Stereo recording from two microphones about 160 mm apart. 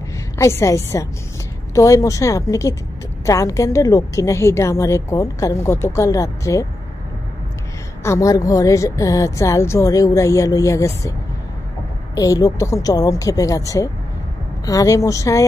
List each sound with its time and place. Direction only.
0.4 s a woman's voice: 15° left (ahead or behind)
8.0 s a woman's voice: 20° left (ahead or behind)
12.2 s a woman's voice: 20° left (ahead or behind)